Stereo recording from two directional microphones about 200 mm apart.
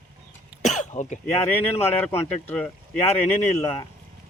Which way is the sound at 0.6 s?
35° left (ahead or behind).